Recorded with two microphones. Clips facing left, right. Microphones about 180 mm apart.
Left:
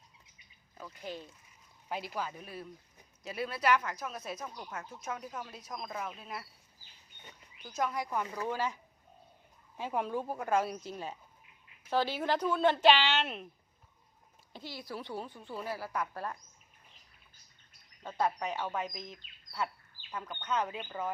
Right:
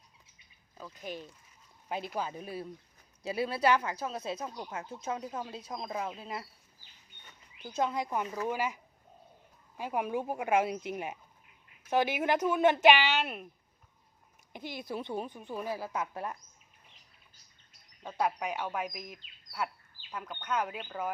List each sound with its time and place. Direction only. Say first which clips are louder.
0.8 s speech: right 1 dB; 10° right (ahead or behind)
7.8 s speech: right 2 dB; 25° right (ahead or behind)
14.5 s speech: right 4 dB; 20° right (ahead or behind)
18.2 s speech: right 1 dB; 10° right (ahead or behind)